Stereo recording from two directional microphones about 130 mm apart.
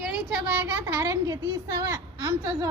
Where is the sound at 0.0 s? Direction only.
5° right (ahead or behind).